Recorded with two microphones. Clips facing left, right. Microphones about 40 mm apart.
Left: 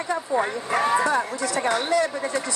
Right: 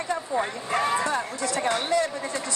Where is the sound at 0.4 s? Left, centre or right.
Left.